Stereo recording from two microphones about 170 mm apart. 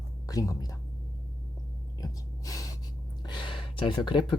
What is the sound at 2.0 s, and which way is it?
Gasp, 20° left (ahead or behind).